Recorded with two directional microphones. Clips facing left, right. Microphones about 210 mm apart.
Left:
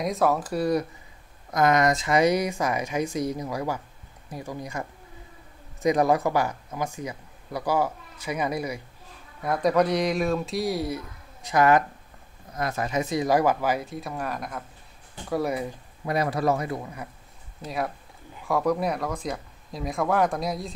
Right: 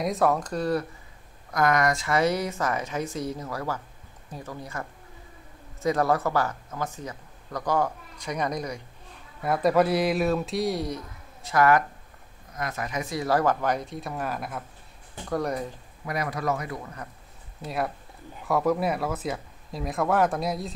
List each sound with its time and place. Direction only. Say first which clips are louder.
0.0 s speech: even; centre (ahead or behind)
11.4 s speech: left 1 dB; 20° left (ahead or behind)
12.5 s speech: left 4 dB; 30° left (ahead or behind); by 15.7 s 5° left (ahead or behind)
16.1 s speech: left 4 dB; 30° left (ahead or behind)
17.6 s speech: even; centre (ahead or behind)